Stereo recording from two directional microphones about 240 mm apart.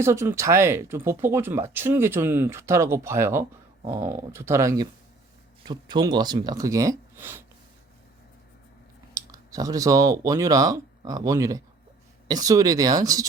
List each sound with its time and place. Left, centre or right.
0.0 s speech: centre
9.1 s speech: centre